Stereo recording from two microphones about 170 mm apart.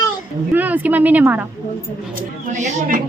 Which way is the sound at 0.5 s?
10° right (ahead or behind).